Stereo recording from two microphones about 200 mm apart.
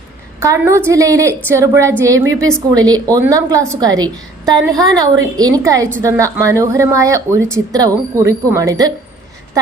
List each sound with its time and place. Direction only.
0.3 s a woman's voice: 15° right (ahead or behind)